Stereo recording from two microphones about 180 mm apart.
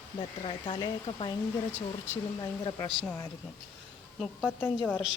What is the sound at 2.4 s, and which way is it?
Speech, 20° left (ahead or behind).